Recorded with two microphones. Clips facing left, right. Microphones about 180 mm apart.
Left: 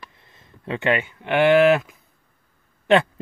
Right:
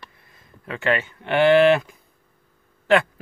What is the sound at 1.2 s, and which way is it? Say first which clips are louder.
Speech: even; 5° left (ahead or behind).